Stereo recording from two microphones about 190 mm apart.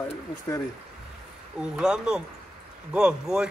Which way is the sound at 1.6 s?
5° right (ahead or behind).